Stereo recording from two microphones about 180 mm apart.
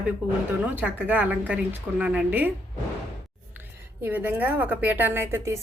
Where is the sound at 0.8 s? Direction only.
10° right (ahead or behind).